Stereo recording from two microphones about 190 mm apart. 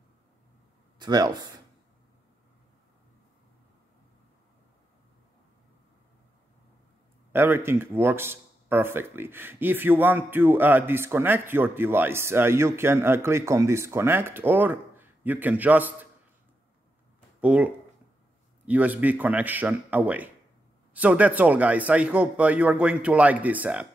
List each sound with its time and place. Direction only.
0.9 s speech: 20° right (ahead or behind)
7.3 s speech: 10° right (ahead or behind)
17.4 s speech: 5° right (ahead or behind)
18.7 s speech: 10° right (ahead or behind)